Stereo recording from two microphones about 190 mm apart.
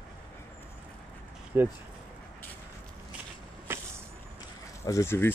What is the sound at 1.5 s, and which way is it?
Speech, 10° right (ahead or behind).